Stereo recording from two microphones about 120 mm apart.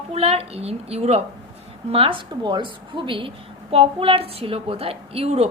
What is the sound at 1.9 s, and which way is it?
A woman's voice, 50° right (ahead or behind).